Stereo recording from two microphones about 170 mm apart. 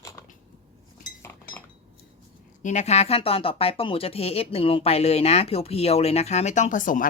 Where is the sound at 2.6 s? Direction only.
40° left (ahead or behind).